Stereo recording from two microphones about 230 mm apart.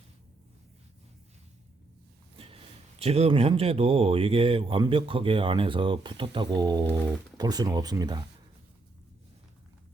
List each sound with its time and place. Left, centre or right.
2.3 s snort: right
3.0 s speech: right